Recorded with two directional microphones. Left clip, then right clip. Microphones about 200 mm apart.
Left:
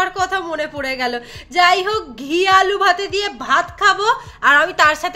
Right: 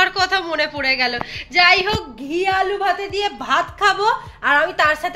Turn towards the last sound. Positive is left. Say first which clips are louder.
# left 3 dB
turn(degrees=15)  # may be behind; listen again after turning